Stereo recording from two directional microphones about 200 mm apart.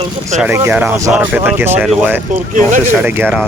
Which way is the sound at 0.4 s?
10° right (ahead or behind).